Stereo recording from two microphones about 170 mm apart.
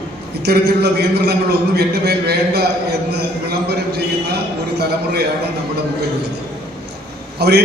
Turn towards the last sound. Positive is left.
turn(degrees=-75)  # may be behind; listen again after turning